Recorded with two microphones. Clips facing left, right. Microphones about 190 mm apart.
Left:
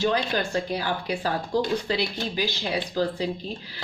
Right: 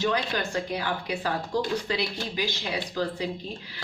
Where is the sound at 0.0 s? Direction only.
30° left (ahead or behind).